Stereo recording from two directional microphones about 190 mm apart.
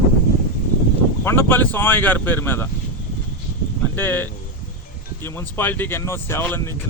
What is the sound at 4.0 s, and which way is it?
A man's voice, 10° left (ahead or behind).